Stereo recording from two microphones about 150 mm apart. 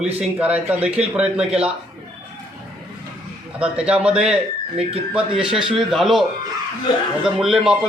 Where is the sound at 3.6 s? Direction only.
5° right (ahead or behind).